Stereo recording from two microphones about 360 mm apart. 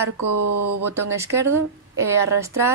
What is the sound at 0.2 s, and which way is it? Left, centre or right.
Speech, right.